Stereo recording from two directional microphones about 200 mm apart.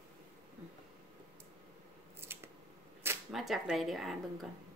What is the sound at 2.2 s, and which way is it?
Scissors, 10° right (ahead or behind).